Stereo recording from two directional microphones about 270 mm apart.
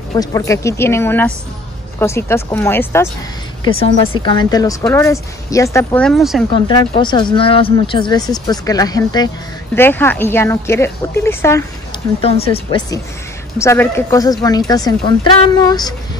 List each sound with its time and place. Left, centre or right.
0.2 s speech: centre
3.6 s speech: centre
6.5 s speech: centre
12.2 s speech: left